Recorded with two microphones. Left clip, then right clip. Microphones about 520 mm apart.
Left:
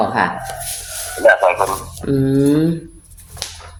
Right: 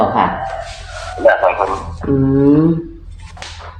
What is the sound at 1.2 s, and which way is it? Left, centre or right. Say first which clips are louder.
Speech: even; left.